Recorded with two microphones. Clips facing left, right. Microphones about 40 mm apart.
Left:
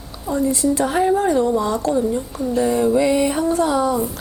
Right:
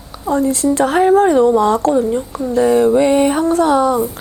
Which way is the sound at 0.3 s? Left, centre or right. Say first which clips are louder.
Right 4 dB; right.